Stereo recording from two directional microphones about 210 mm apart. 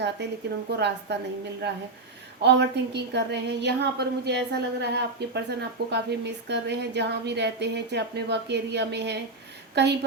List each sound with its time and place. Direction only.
0.8 s a woman's voice: 55° right (ahead or behind)